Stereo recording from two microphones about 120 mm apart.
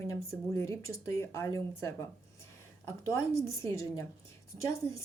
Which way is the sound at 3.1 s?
25° left (ahead or behind).